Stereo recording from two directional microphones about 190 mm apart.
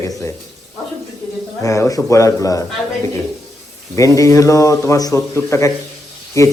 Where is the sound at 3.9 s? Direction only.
15° left (ahead or behind).